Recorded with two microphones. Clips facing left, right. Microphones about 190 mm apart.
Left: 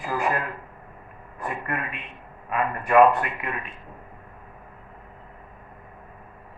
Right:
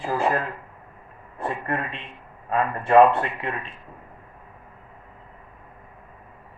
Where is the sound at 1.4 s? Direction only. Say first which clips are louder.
Right 3 dB; 30° right (ahead or behind).